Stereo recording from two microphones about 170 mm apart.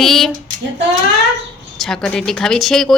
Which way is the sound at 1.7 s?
5° left (ahead or behind).